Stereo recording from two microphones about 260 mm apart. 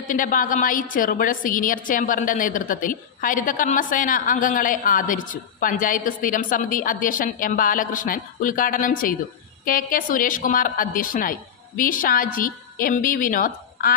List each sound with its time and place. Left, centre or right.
0.1 s a woman's voice: left